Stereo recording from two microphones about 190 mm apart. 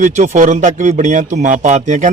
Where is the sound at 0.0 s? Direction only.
40° right (ahead or behind).